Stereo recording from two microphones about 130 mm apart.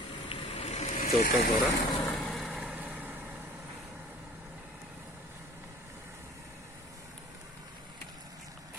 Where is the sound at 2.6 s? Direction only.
15° right (ahead or behind).